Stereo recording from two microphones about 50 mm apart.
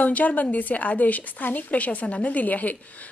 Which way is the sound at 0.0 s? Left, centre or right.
Left.